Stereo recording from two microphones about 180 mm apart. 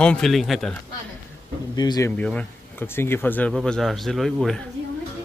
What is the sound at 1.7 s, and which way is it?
Speech, 20° left (ahead or behind).